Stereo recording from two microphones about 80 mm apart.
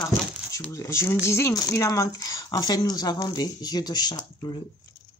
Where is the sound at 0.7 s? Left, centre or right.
Left.